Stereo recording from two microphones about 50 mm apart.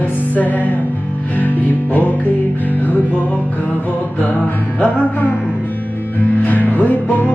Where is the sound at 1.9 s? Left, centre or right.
Left.